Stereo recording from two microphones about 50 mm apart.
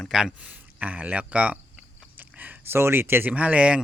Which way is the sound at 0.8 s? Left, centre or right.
Right.